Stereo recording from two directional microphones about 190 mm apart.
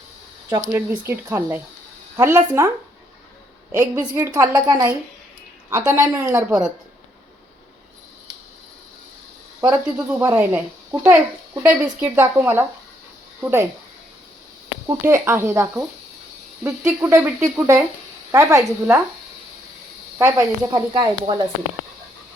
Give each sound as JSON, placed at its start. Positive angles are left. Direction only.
{"t": 0.5, "sound": "a child's voice", "side_deg": -15}
{"t": 9.6, "sound": "a child's voice", "side_deg": -10}
{"t": 14.8, "sound": "a child's voice", "side_deg": -15}
{"t": 20.1, "sound": "speech", "side_deg": -15}